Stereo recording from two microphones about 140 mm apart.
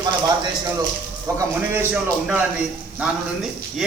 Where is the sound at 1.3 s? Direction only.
15° right (ahead or behind).